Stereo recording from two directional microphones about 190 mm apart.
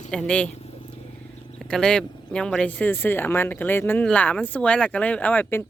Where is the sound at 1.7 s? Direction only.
5° left (ahead or behind).